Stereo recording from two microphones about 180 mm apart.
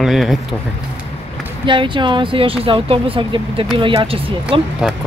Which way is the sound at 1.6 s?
25° right (ahead or behind).